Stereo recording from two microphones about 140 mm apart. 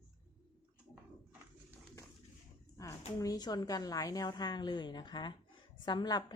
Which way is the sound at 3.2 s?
25° left (ahead or behind).